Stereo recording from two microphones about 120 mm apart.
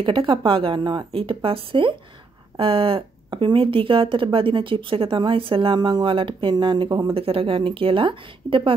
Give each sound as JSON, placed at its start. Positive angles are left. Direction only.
{"t": 0.0, "sound": "speech", "side_deg": -45}
{"t": 7.2, "sound": "speech", "side_deg": -50}